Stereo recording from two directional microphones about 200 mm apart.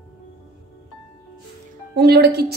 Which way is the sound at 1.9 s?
55° right (ahead or behind).